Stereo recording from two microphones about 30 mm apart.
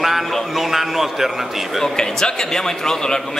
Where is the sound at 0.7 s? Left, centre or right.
Centre.